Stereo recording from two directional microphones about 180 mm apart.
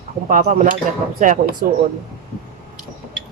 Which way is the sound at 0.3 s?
45° right (ahead or behind).